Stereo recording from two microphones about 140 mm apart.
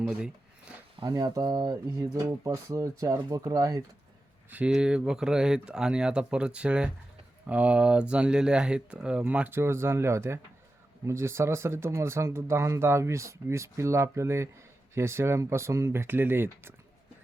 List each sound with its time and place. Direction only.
0.0 s speech: 5° right (ahead or behind)
1.0 s speech: 25° right (ahead or behind)
4.5 s speech: 5° right (ahead or behind)